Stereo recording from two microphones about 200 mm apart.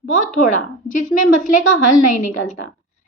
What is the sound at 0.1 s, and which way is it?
Speech, 40° left (ahead or behind).